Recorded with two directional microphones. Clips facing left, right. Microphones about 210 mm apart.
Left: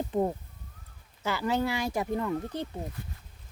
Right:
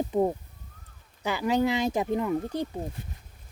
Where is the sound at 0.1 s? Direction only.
10° right (ahead or behind).